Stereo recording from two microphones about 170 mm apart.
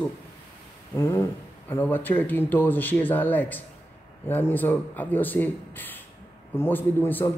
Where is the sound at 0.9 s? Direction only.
15° left (ahead or behind).